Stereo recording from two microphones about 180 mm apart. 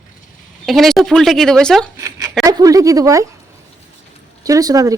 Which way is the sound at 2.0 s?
20° right (ahead or behind).